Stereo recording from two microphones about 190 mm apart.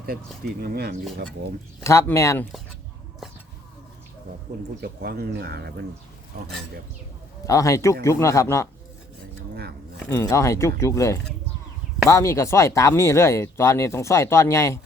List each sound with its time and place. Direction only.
0.6 s speech: 55° right (ahead or behind)
1.8 s speech: 15° left (ahead or behind)
4.8 s speech: 55° right (ahead or behind)
7.4 s speech: 15° left (ahead or behind)
10.1 s speech: 15° left (ahead or behind)